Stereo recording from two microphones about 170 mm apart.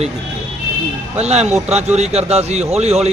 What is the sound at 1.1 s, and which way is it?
A man's voice, 40° right (ahead or behind).